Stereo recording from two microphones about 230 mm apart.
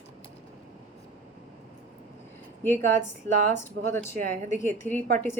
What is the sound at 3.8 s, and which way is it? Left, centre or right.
Speech, right.